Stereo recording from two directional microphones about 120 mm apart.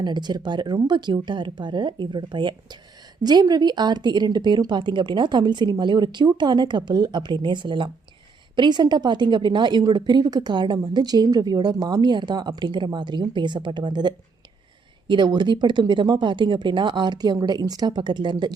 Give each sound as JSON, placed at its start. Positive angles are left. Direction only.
{"t": 0.0, "sound": "a woman's voice", "side_deg": -40}